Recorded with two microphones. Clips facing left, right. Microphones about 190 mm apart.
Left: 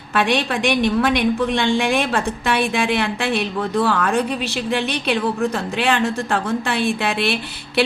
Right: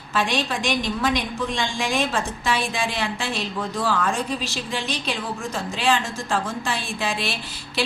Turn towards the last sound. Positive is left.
turn(degrees=60)  # may be behind; listen again after turning